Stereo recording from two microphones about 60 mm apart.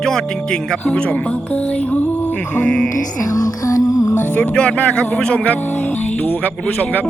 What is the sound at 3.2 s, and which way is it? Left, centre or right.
Music, left.